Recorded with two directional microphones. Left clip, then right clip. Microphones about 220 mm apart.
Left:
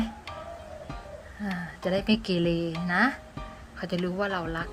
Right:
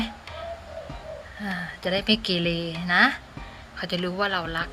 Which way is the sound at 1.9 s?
20° left (ahead or behind).